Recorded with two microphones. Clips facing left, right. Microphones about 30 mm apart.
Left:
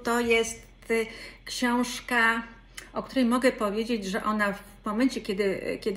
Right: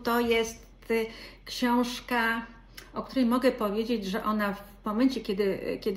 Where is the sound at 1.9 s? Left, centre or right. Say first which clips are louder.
Left 4 dB; left.